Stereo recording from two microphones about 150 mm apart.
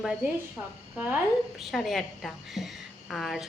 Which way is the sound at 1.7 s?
Centre (ahead or behind).